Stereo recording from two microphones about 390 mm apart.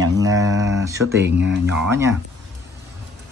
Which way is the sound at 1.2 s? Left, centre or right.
Right.